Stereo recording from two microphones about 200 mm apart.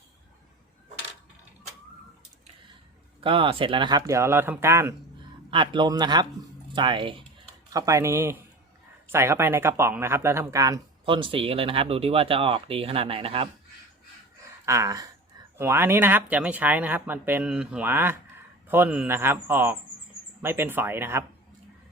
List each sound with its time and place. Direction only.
3.2 s speech: 25° right (ahead or behind)
5.5 s speech: 25° right (ahead or behind)
14.6 s a sound: 15° right (ahead or behind)
15.5 s speech: 10° right (ahead or behind)